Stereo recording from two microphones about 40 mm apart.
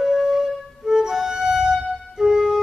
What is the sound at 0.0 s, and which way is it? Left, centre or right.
Flute, centre.